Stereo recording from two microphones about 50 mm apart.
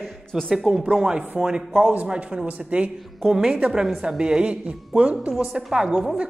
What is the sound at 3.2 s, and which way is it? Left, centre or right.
A woman's voice, centre.